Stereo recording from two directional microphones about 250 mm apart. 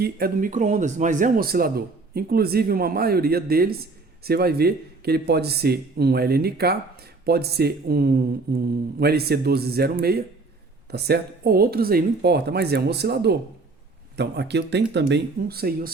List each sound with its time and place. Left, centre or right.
0.0 s a man's voice: right